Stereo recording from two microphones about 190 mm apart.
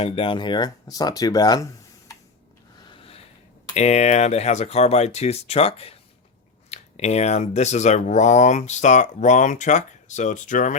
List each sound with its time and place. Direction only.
0.0 s speech: 30° left (ahead or behind)
3.8 s speech: 35° left (ahead or behind)